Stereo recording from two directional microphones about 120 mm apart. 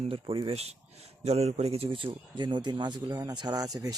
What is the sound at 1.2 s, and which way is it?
A man's voice, 60° right (ahead or behind).